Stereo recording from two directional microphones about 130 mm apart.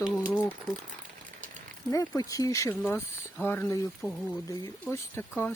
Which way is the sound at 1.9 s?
25° left (ahead or behind).